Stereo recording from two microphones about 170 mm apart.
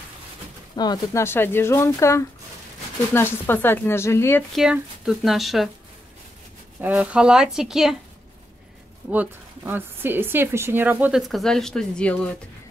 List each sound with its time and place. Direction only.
0.7 s speech: 20° left (ahead or behind)
4.5 s speech: centre (ahead or behind)
6.8 s speech: 10° right (ahead or behind)
9.1 s speech: 10° right (ahead or behind); by 12.4 s 5° left (ahead or behind)